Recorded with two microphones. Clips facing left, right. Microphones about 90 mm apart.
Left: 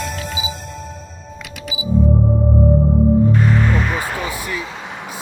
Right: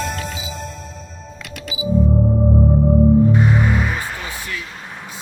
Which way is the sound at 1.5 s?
Centre (ahead or behind).